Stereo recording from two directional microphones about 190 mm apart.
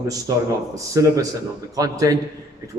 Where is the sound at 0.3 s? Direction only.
20° right (ahead or behind).